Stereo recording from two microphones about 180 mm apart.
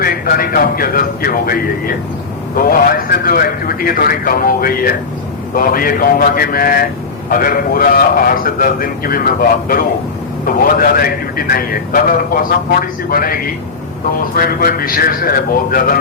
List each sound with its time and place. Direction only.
0.0 s a man's voice: 55° left (ahead or behind)